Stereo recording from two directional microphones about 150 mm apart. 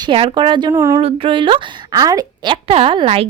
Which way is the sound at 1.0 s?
35° right (ahead or behind).